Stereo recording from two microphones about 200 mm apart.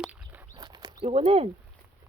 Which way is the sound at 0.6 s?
20° right (ahead or behind).